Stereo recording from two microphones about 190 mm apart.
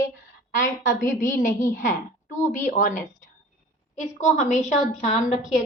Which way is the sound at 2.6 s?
45° left (ahead or behind).